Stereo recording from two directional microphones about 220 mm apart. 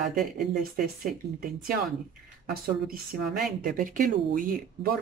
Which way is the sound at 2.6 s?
40° right (ahead or behind).